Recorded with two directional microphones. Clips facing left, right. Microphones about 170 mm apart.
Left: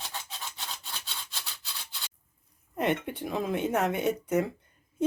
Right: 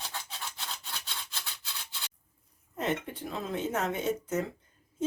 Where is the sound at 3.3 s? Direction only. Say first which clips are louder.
Left 4 dB; 15° left (ahead or behind).